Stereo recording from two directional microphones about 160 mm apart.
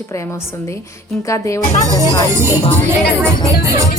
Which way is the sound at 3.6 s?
20° right (ahead or behind).